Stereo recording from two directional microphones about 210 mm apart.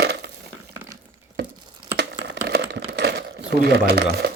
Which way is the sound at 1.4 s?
55° right (ahead or behind).